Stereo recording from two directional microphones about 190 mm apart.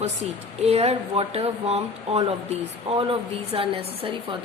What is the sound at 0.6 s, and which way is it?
A woman's voice, 35° right (ahead or behind).